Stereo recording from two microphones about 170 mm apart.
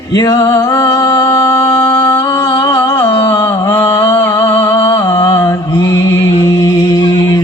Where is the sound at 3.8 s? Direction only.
30° left (ahead or behind).